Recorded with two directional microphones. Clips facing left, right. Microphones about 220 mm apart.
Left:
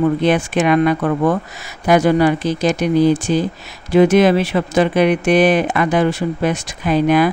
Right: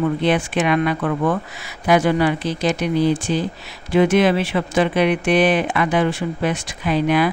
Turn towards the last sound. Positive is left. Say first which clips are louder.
# left 4 dB
turn(degrees=45)  # may be behind; listen again after turning